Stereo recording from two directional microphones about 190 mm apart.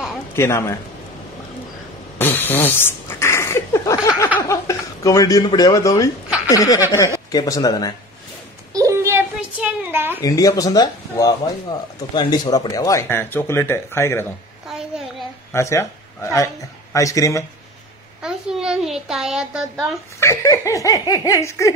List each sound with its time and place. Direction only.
0.4 s speech: 15° left (ahead or behind)
2.1 s a sound: 10° left (ahead or behind)
6.5 s speech: 20° left (ahead or behind)
8.7 s a sound: 15° right (ahead or behind)
10.2 s speech: 20° left (ahead or behind)
14.7 s a sound: centre (ahead or behind)
15.5 s speech: 15° left (ahead or behind)
18.2 s a child's voice: 5° right (ahead or behind)
20.2 s speech: 15° left (ahead or behind)